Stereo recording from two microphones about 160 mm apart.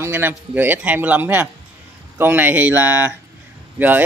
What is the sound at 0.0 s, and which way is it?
Speech, 15° right (ahead or behind).